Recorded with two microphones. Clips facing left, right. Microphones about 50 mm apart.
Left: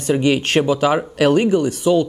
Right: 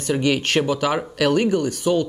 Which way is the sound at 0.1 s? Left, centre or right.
Left.